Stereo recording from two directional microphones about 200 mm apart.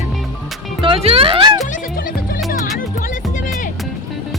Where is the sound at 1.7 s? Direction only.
45° left (ahead or behind).